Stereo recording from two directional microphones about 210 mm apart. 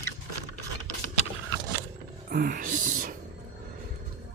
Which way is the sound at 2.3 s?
45° right (ahead or behind).